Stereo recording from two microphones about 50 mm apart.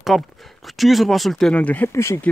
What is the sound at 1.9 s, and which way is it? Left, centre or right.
Speech, left.